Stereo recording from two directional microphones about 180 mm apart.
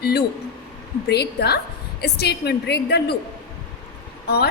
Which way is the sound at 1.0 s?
65° left (ahead or behind).